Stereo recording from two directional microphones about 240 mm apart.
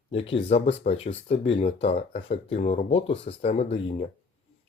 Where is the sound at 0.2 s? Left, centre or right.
Left.